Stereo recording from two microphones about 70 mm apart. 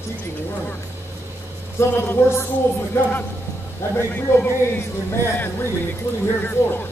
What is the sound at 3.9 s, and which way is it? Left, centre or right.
Speech, left.